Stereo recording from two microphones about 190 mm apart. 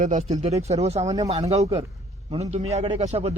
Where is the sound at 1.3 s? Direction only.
35° right (ahead or behind).